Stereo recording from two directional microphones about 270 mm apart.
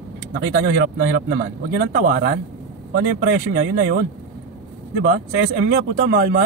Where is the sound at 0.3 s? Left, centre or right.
Right.